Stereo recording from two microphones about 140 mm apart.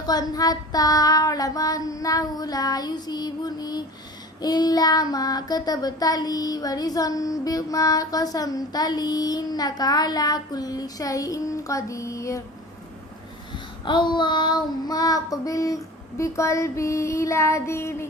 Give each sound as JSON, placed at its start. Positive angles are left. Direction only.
{"t": 0.0, "sound": "child singing", "side_deg": 30}
{"t": 13.5, "sound": "child singing", "side_deg": 35}